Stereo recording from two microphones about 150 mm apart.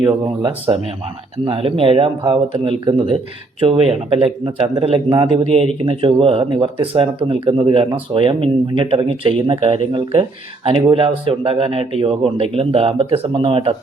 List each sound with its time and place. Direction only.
0.4 s speech: 40° right (ahead or behind)